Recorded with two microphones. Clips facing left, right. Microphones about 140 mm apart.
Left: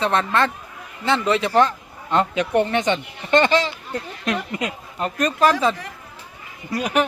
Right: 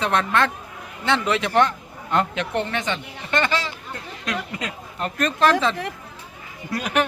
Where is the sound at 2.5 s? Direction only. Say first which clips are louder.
Left 7 dB; 20° left (ahead or behind).